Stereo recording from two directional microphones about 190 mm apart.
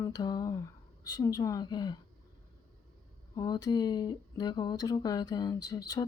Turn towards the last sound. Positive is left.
turn(degrees=20)  # may be behind; listen again after turning